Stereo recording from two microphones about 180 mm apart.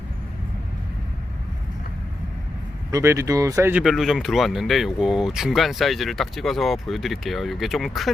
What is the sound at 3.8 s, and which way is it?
Speech, centre (ahead or behind).